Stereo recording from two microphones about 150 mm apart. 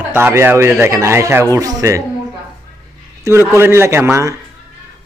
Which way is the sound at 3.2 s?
15° right (ahead or behind).